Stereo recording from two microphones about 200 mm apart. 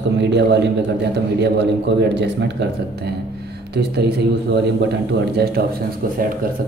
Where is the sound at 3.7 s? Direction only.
55° right (ahead or behind).